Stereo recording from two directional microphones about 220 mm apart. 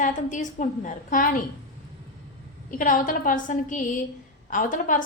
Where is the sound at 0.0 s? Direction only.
35° left (ahead or behind).